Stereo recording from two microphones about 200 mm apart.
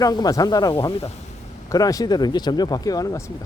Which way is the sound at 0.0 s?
20° left (ahead or behind).